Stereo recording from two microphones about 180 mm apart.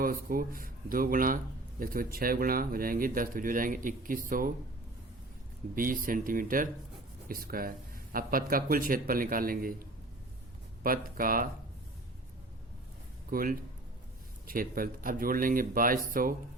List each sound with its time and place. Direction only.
0.0 s speech: 50° right (ahead or behind)
5.7 s speech: 50° right (ahead or behind)
10.8 s speech: 50° right (ahead or behind)
13.3 s speech: 50° right (ahead or behind)